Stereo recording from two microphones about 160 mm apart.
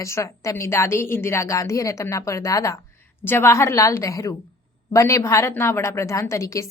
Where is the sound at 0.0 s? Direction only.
20° left (ahead or behind).